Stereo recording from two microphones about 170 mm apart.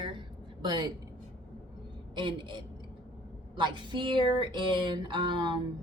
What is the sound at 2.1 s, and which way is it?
A woman's voice, 30° right (ahead or behind).